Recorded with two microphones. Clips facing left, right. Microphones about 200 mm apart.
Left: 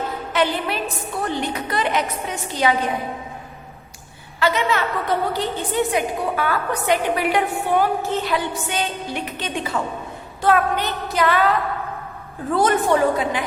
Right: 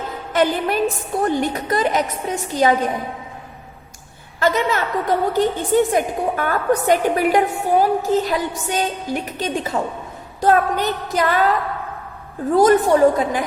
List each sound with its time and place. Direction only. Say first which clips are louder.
0.3 s a woman's voice: right 4 dB; 45° right (ahead or behind)
4.4 s a woman's voice: right 2 dB; 45° right (ahead or behind)
12.5 s a woman's voice: right 5 dB; 40° right (ahead or behind)